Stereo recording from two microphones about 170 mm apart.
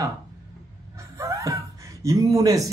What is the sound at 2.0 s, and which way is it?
Speech, 20° right (ahead or behind).